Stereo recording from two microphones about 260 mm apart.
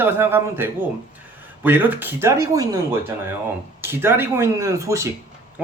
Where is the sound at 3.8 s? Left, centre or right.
Centre.